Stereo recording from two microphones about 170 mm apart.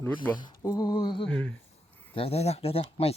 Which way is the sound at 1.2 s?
5° left (ahead or behind).